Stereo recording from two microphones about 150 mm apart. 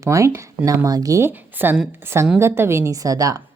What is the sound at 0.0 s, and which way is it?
Speech, 20° right (ahead or behind).